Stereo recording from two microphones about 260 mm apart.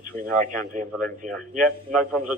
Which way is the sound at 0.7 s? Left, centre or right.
Right.